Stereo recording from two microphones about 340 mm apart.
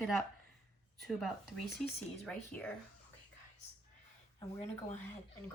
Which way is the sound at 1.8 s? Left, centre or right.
Centre.